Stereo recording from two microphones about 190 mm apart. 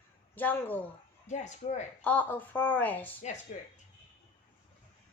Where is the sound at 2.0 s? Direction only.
10° left (ahead or behind).